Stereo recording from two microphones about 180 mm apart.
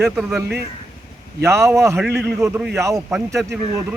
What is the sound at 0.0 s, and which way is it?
Speech, 5° right (ahead or behind).